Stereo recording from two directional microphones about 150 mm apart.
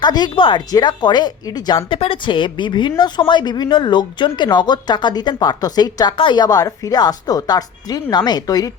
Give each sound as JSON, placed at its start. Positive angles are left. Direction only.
{"t": 0.0, "sound": "speech", "side_deg": 30}